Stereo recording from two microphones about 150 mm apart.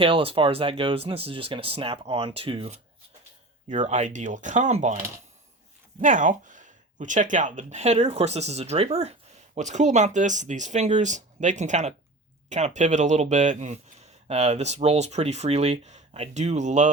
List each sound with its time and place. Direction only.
0.0 s speech: 40° right (ahead or behind)